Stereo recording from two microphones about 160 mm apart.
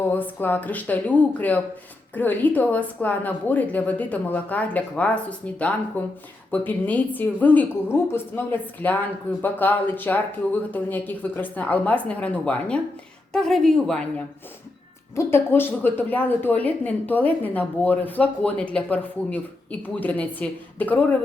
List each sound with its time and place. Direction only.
0.1 s a woman's voice: 10° left (ahead or behind)
15.1 s a woman's voice: 15° left (ahead or behind)